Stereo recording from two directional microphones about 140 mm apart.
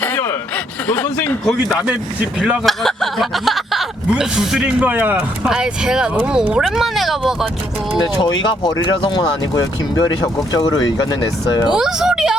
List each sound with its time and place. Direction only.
0.0 s a sound: 15° left (ahead or behind)
2.4 s speech: 5° right (ahead or behind)
8.0 s speech: 35° left (ahead or behind)
11.7 s speech: 5° right (ahead or behind)